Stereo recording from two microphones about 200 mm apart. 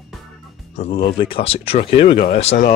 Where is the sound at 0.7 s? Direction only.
30° left (ahead or behind).